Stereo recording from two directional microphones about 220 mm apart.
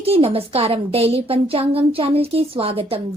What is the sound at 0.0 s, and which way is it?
A woman's voice, 25° right (ahead or behind).